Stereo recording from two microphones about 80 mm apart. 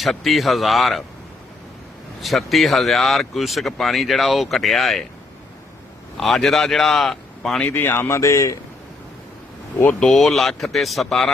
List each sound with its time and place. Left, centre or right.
0.0 s speech: centre
2.2 s speech: centre
6.1 s speech: centre
7.6 s speech: left
8.0 s speech: left
10.0 s speech: centre